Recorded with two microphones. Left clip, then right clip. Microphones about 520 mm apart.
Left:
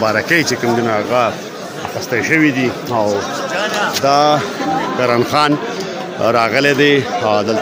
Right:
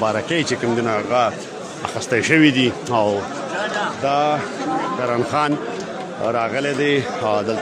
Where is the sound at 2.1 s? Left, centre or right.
Right.